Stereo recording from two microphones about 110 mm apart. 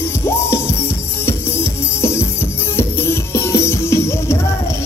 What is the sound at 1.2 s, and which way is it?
Music, 20° left (ahead or behind).